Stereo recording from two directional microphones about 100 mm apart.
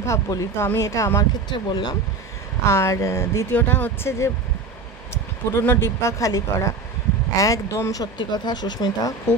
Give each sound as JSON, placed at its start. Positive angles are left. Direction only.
{"t": 0.0, "sound": "speech", "side_deg": 30}
{"t": 1.5, "sound": "speech", "side_deg": 45}
{"t": 2.6, "sound": "speech", "side_deg": 30}
{"t": 3.5, "sound": "speech", "side_deg": 20}
{"t": 8.2, "sound": "speech", "side_deg": 45}